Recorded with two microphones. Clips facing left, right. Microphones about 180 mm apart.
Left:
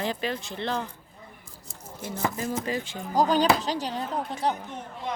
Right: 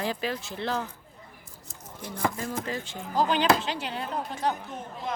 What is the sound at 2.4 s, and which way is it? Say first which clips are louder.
Speech: left 3 dB; 20° left (ahead or behind).